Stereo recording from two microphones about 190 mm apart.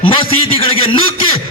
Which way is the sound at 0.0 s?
30° left (ahead or behind).